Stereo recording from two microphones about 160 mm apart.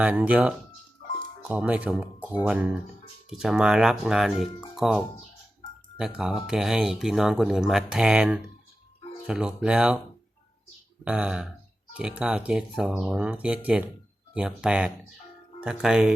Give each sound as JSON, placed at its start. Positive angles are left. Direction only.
{"t": 0.0, "sound": "speech", "side_deg": -10}
{"t": 3.2, "sound": "speech", "side_deg": -5}
{"t": 11.0, "sound": "speech", "side_deg": -5}